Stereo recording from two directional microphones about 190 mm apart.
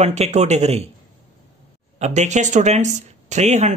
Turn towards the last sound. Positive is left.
turn(degrees=-35)  # may be behind; listen again after turning